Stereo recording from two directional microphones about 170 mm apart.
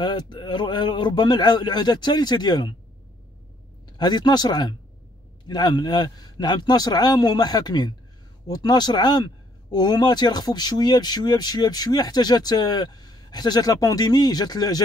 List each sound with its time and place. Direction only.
0.0 s speech: 25° left (ahead or behind)
4.0 s speech: 25° left (ahead or behind)